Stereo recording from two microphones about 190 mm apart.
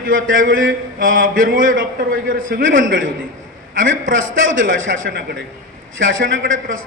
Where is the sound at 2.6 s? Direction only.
90° right.